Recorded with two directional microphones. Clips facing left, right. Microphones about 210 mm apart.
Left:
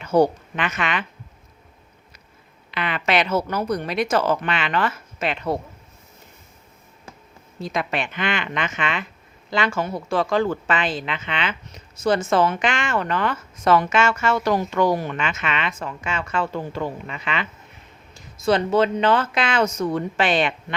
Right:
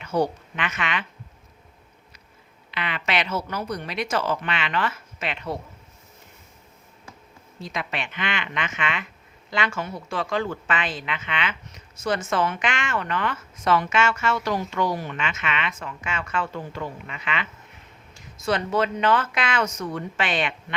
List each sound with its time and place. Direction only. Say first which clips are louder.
0.0 s a woman's voice: left 6 dB; 40° left (ahead or behind)
2.7 s a woman's voice: left 5 dB; 45° left (ahead or behind)
7.6 s a woman's voice: left 6 dB; 45° left (ahead or behind)
18.4 s speech: left 5 dB; 25° left (ahead or behind)